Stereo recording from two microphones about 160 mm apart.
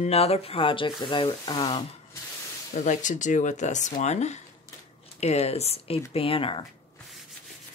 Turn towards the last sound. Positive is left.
turn(degrees=35)  # may be behind; listen again after turning